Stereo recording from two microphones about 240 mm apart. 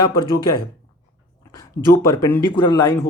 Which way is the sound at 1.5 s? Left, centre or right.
Centre.